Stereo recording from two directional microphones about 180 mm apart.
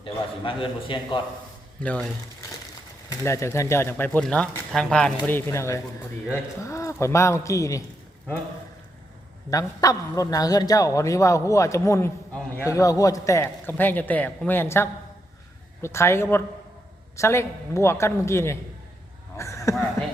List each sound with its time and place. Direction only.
0.0 s a man's voice: 30° left (ahead or behind)
1.8 s speech: 5° left (ahead or behind)
3.1 s speech: 15° left (ahead or behind)
9.5 s speech: 20° left (ahead or behind)
19.4 s a sound: 15° left (ahead or behind)